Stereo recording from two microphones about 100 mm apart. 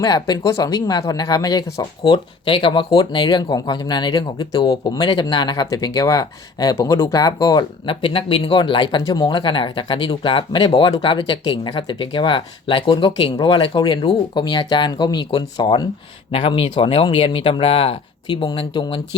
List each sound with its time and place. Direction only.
0.0 s speech: 45° left (ahead or behind)
7.9 s speech: 60° left (ahead or behind); by 15.9 s 45° left (ahead or behind)
16.3 s speech: 65° left (ahead or behind)
18.3 s speech: 55° left (ahead or behind)